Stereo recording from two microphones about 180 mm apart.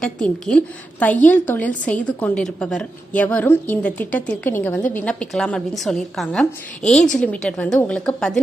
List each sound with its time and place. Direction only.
0.0 s a woman's voice: 5° left (ahead or behind)